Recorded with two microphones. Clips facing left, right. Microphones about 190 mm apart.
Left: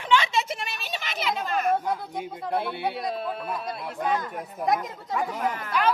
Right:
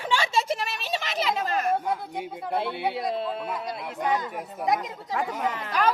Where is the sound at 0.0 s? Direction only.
40° right (ahead or behind).